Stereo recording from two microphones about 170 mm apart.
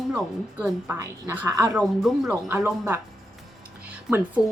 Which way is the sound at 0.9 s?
15° right (ahead or behind).